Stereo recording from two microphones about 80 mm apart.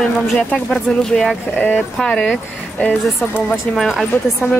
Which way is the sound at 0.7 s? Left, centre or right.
Centre.